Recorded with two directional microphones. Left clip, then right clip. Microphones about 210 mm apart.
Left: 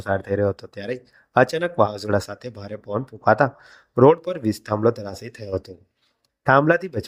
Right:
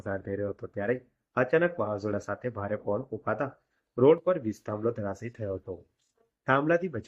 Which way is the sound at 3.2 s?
50° left (ahead or behind).